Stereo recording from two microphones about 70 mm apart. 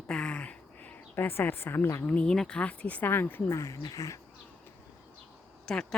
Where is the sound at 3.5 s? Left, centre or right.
Left.